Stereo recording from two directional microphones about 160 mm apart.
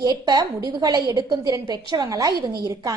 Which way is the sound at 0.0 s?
25° right (ahead or behind).